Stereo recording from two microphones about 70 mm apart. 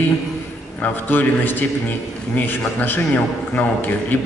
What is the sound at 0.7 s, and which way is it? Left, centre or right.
A man's voice, left.